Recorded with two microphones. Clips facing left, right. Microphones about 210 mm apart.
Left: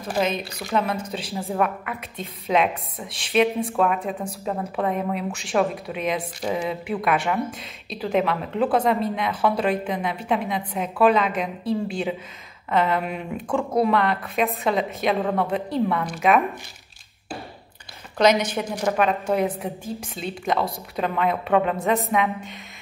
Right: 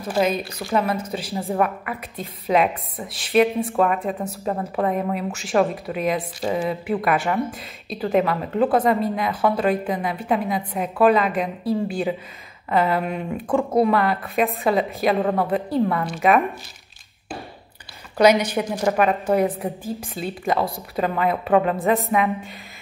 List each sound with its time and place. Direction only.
0.2 s a woman's voice: 5° right (ahead or behind)
18.1 s a woman's voice: 10° right (ahead or behind)